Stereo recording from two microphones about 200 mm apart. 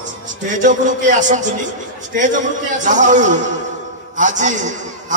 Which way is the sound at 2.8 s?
40° right (ahead or behind).